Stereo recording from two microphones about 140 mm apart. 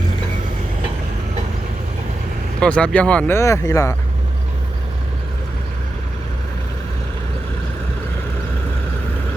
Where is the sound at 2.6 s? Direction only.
10° left (ahead or behind).